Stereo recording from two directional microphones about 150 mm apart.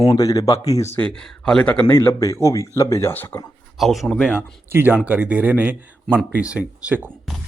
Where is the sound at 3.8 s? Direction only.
Centre (ahead or behind).